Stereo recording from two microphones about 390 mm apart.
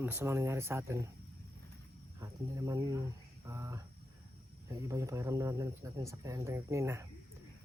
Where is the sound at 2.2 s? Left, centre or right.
Centre.